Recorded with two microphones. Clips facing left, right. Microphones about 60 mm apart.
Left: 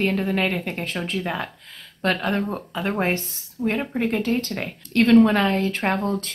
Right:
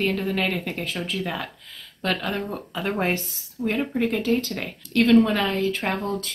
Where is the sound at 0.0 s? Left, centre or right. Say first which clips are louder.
Left 2 dB; centre.